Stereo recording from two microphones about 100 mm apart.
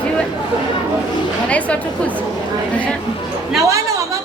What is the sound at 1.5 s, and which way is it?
Speech, 15° left (ahead or behind).